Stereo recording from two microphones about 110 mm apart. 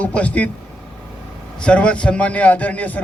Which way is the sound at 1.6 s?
10° left (ahead or behind).